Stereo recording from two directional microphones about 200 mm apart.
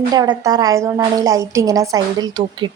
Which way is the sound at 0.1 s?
20° right (ahead or behind).